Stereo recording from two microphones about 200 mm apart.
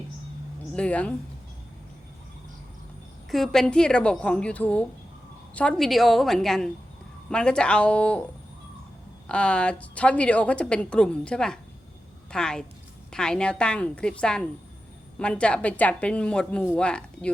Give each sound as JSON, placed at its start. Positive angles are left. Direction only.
{"t": 0.7, "sound": "speech", "side_deg": 5}
{"t": 3.2, "sound": "a woman's voice", "side_deg": 0}
{"t": 9.3, "sound": "a woman's voice", "side_deg": 5}